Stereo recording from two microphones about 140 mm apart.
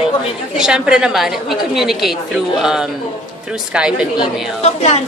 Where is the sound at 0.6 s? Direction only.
5° right (ahead or behind).